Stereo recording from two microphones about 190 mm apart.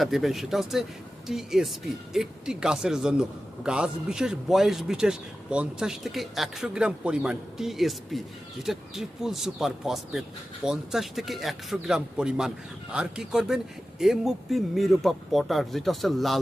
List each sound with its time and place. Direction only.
0.0 s a man's voice: centre (ahead or behind)